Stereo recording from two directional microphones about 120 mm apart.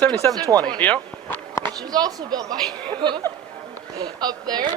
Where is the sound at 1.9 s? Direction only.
30° right (ahead or behind).